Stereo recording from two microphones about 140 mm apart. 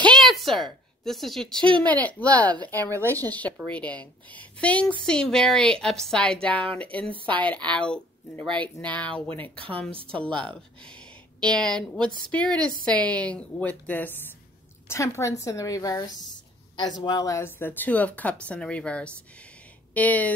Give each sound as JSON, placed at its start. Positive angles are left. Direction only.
{"t": 0.0, "sound": "a sound", "side_deg": 5}
{"t": 1.6, "sound": "speech", "side_deg": -35}
{"t": 1.9, "sound": "a woman's voice", "side_deg": 10}
{"t": 7.1, "sound": "speech", "side_deg": -40}
{"t": 7.3, "sound": "speech", "side_deg": 10}